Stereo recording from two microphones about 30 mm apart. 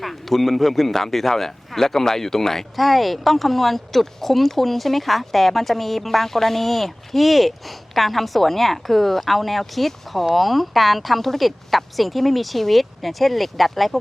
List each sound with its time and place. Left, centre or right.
0.0 s speech: centre
2.7 s speech: centre